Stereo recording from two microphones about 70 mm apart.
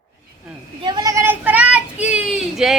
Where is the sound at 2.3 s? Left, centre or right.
Centre.